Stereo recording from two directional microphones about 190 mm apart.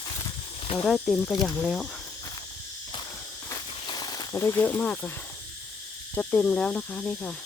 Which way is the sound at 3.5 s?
20° left (ahead or behind).